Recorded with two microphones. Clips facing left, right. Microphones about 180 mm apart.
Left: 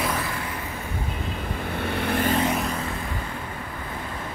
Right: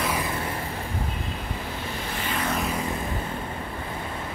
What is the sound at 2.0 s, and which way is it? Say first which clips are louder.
Vehicle: left 12 dB; 55° left (ahead or behind).